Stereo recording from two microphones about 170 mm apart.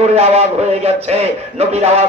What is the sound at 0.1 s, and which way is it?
A man's voice, 35° right (ahead or behind).